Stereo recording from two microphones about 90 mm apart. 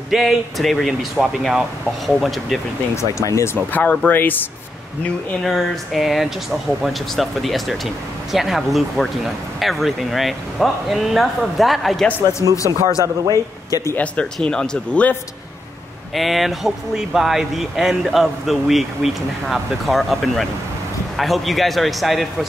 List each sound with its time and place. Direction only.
0.1 s speech: centre (ahead or behind)
3.0 s speech: 35° left (ahead or behind)
3.7 s speech: 15° left (ahead or behind)
5.4 s speech: centre (ahead or behind)
12.4 s speech: 45° right (ahead or behind)
13.7 s speech: 40° left (ahead or behind)
13.9 s speech: 10° left (ahead or behind)
16.2 s speech: centre (ahead or behind)